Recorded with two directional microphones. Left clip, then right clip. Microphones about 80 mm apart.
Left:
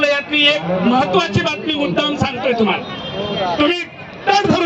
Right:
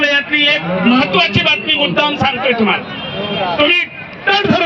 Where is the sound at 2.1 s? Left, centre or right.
Left.